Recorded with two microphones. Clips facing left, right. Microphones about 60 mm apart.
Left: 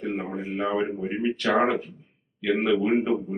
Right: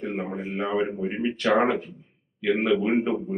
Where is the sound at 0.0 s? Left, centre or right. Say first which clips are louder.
Even; centre.